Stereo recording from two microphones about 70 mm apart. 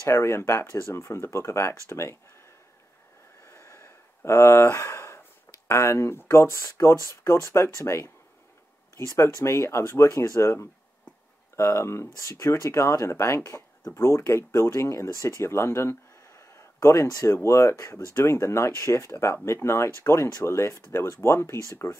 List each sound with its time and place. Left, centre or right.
0.0 s speech: left
3.4 s a sound: left
5.7 s speech: left
9.4 s speech: left